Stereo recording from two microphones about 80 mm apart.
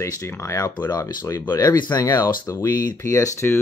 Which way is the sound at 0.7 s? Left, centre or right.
Left.